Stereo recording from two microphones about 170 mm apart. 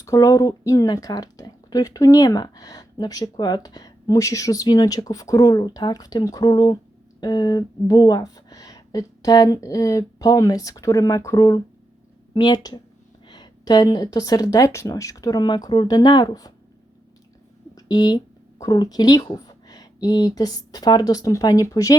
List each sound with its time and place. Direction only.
0.0 s speech: 20° left (ahead or behind)
17.7 s a sound: 25° left (ahead or behind)
18.6 s speech: 25° left (ahead or behind)